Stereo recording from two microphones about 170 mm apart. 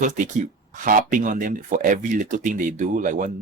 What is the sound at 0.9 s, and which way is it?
Speech, 50° right (ahead or behind).